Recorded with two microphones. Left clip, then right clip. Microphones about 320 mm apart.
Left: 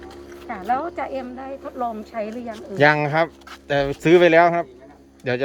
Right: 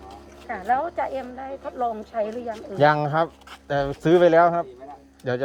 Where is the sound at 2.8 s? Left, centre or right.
Centre.